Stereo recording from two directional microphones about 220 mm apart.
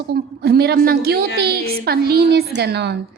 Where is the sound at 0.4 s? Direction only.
45° right (ahead or behind).